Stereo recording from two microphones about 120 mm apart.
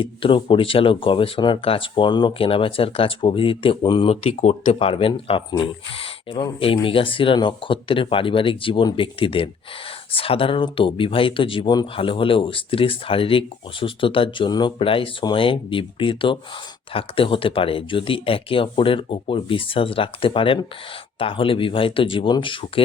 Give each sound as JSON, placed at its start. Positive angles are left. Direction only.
{"t": 0.0, "sound": "speech", "side_deg": 45}
{"t": 4.1, "sound": "speech", "side_deg": 60}
{"t": 4.9, "sound": "speech", "side_deg": 50}